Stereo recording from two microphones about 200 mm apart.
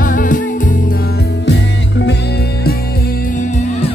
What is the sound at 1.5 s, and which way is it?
Music, 60° left (ahead or behind).